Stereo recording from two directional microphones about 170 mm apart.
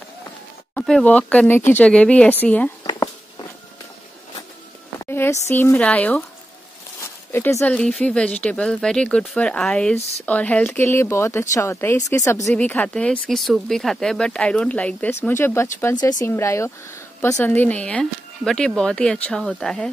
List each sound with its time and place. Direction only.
0.7 s speech: 5° left (ahead or behind)
2.8 s a sound: 25° left (ahead or behind)
5.1 s speech: 15° left (ahead or behind)
7.3 s speech: 10° left (ahead or behind)